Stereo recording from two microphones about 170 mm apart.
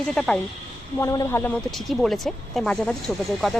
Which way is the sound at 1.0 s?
20° left (ahead or behind).